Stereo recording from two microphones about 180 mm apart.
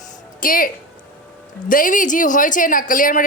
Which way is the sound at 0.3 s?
50° left (ahead or behind).